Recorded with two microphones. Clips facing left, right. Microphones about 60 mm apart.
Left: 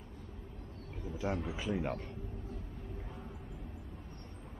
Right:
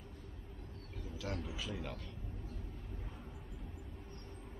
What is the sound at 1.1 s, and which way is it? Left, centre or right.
Speech, left.